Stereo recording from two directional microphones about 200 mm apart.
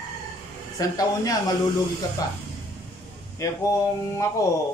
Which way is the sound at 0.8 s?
20° left (ahead or behind).